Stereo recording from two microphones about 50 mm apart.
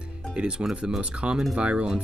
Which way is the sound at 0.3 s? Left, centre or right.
Centre.